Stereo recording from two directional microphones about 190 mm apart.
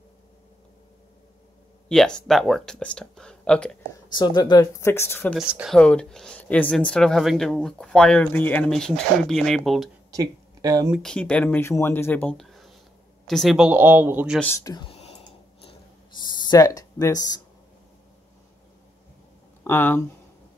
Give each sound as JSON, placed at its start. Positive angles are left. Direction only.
{"t": 1.9, "sound": "speech", "side_deg": 5}
{"t": 4.1, "sound": "speech", "side_deg": 25}
{"t": 5.5, "sound": "speech", "side_deg": -5}
{"t": 5.8, "sound": "speech", "side_deg": 5}
{"t": 10.1, "sound": "speech", "side_deg": -20}
{"t": 10.9, "sound": "speech", "side_deg": 5}
{"t": 14.4, "sound": "speech", "side_deg": 15}
{"t": 16.2, "sound": "speech", "side_deg": 20}
{"t": 19.6, "sound": "speech", "side_deg": 10}